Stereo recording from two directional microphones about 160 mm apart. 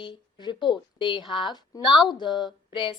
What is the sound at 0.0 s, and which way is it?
A woman's voice, 30° left (ahead or behind).